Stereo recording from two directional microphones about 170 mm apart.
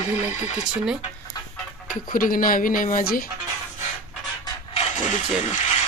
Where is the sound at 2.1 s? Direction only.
55° left (ahead or behind).